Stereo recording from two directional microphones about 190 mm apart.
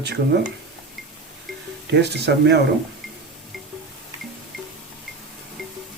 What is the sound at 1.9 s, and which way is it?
Speech, 60° right (ahead or behind).